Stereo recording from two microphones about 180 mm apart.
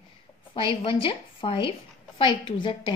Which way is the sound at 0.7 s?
30° left (ahead or behind).